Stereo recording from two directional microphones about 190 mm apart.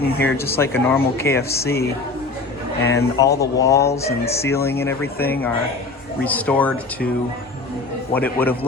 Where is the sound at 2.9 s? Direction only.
15° left (ahead or behind).